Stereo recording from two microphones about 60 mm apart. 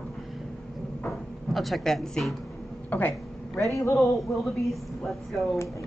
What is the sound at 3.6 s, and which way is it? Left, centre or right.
Speech, left.